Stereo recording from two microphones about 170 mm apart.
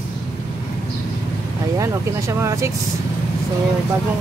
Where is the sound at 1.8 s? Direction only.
15° right (ahead or behind).